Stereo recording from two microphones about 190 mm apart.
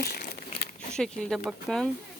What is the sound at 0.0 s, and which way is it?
Crumpling, 55° left (ahead or behind).